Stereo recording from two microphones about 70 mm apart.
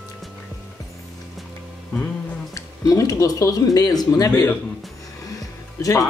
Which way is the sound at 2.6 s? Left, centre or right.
Left.